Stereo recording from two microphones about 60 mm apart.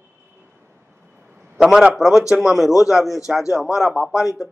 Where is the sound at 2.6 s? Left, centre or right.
Left.